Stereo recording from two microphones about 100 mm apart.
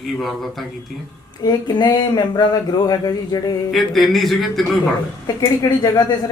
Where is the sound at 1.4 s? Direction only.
45° left (ahead or behind).